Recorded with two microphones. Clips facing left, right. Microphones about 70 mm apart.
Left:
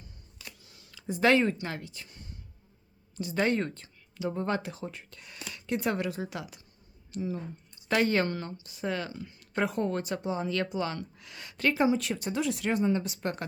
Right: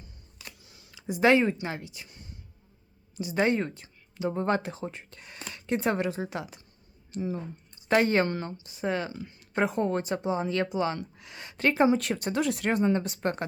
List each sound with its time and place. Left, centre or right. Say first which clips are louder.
0.6 s speech: right 1 dB; centre
4.2 s speech: right 3 dB; right